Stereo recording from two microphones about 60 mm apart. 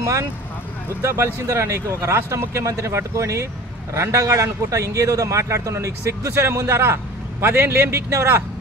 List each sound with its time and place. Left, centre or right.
1.0 s a man's voice: right